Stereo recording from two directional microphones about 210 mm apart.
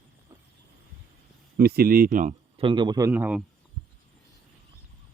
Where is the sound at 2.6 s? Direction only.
20° right (ahead or behind); by 3.4 s 5° right (ahead or behind).